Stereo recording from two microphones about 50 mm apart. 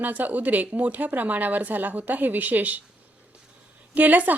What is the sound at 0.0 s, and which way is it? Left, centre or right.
A woman's voice, right.